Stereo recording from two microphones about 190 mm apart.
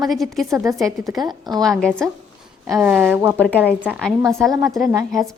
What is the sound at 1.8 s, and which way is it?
Speech, 5° left (ahead or behind).